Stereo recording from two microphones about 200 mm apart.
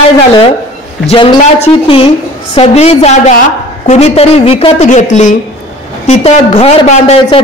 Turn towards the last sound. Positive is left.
turn(degrees=30)  # may be behind; listen again after turning